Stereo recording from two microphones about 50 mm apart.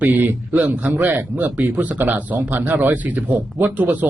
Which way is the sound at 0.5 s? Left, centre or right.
Right.